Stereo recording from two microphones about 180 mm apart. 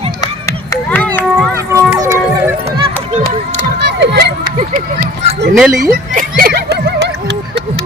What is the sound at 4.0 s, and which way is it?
Run, 70° right (ahead or behind).